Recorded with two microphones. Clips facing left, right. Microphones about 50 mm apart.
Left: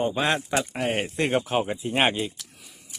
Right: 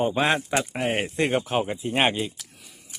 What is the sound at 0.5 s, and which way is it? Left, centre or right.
Speech, centre.